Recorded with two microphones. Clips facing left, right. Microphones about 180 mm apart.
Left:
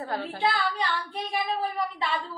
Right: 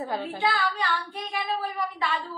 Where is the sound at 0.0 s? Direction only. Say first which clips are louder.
Right 1 dB; 20° right (ahead or behind).